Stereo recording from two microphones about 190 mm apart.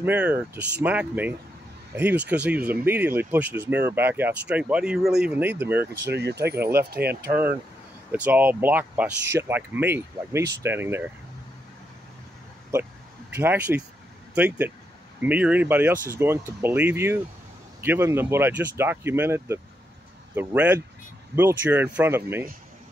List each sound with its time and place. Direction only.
0.0 s speech: 10° right (ahead or behind)
6.0 s speech: 60° right (ahead or behind)
7.2 s speech: 10° right (ahead or behind)
13.3 s speech: 10° right (ahead or behind)